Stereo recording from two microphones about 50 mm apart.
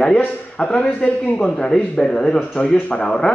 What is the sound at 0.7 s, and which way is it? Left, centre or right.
Speech, centre.